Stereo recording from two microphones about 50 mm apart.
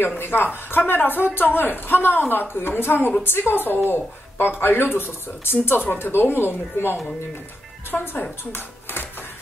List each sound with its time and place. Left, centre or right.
0.2 s speech: left